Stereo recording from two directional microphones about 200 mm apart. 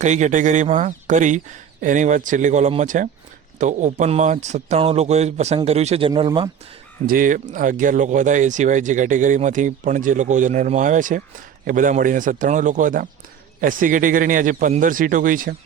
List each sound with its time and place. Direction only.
0.0 s speech: 35° right (ahead or behind)
7.1 s a man's voice: 45° right (ahead or behind)